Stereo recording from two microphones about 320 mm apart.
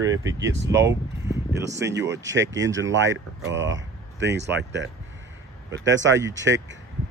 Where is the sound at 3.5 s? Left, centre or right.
Right.